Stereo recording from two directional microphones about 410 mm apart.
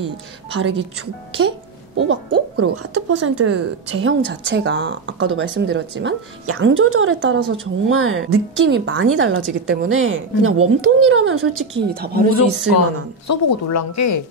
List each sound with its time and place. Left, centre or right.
2.0 s speech: right
13.3 s a woman's voice: left